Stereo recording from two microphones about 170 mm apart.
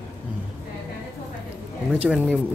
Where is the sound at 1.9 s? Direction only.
5° right (ahead or behind).